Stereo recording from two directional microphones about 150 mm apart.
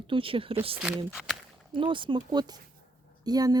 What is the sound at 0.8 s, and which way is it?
Speech, 5° right (ahead or behind).